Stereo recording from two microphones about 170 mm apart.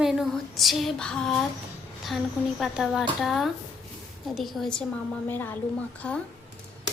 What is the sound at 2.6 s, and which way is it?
A woman's voice, centre (ahead or behind).